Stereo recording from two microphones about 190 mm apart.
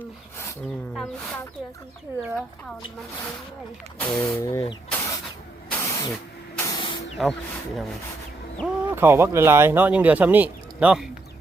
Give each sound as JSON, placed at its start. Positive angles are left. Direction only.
{"t": 0.9, "sound": "speech", "side_deg": 5}
{"t": 3.9, "sound": "speech", "side_deg": 5}
{"t": 5.7, "sound": "spray", "side_deg": 15}
{"t": 7.2, "sound": "speech", "side_deg": 0}
{"t": 8.6, "sound": "speech", "side_deg": -10}